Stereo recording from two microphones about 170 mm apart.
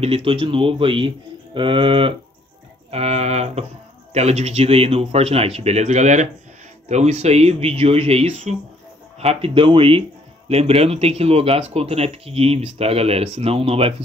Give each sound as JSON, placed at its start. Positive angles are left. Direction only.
{"t": 0.0, "sound": "speech", "side_deg": -35}